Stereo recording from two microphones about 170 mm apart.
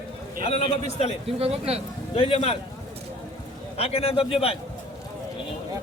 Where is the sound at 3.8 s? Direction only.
35° left (ahead or behind).